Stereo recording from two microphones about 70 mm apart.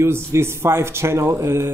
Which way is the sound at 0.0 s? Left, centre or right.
Right.